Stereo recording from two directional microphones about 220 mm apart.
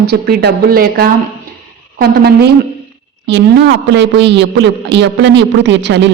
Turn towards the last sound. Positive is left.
turn(degrees=-50)  # may be behind; listen again after turning